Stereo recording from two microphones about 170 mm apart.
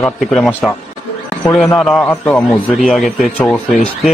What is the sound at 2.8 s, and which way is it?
Speech, centre (ahead or behind).